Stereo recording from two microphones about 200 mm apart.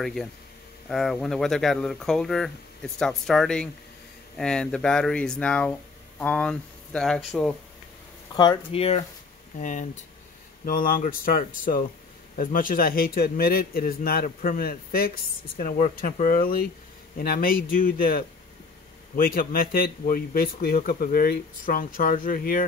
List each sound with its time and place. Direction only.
0.0 s speech: centre (ahead or behind)
8.4 s a man's voice: 25° left (ahead or behind); by 22.7 s 45° left (ahead or behind)